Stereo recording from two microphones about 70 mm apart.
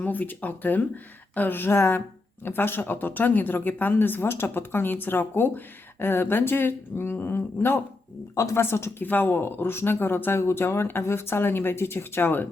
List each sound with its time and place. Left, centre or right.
0.0 s speech: left